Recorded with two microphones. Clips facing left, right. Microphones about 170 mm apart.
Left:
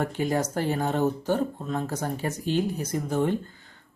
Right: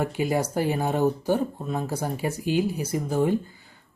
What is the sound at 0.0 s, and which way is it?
Speech, 10° right (ahead or behind).